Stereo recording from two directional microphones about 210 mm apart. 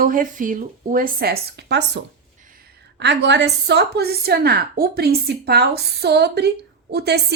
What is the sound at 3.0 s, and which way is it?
A woman's voice, 55° right (ahead or behind).